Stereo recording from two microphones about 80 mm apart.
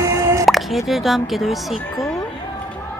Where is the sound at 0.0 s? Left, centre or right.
Right.